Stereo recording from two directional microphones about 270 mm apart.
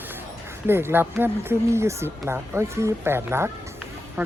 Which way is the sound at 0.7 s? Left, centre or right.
Centre.